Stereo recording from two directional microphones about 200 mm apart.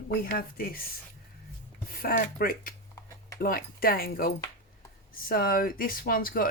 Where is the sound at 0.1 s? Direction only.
45° left (ahead or behind).